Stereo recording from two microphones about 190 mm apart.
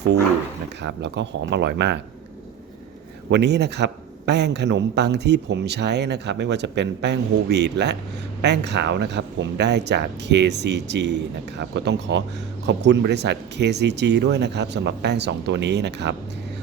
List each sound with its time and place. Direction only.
0.8 s a man's voice: 65° right (ahead or behind)
3.2 s a man's voice: 65° right (ahead or behind)